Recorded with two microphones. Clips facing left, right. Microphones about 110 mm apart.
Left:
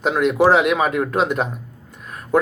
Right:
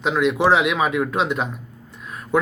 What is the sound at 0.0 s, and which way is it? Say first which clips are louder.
Speech: left 3 dB; 45° left (ahead or behind).